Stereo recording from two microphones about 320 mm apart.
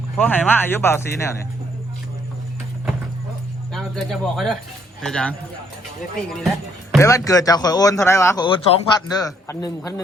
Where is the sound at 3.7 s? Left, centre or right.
Centre.